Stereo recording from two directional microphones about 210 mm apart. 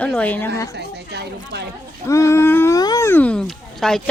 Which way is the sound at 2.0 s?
15° left (ahead or behind).